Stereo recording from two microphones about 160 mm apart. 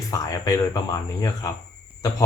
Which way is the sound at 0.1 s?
20° left (ahead or behind).